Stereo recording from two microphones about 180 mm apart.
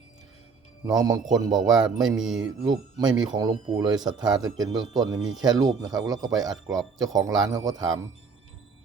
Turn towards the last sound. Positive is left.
turn(degrees=-20)  # may be behind; listen again after turning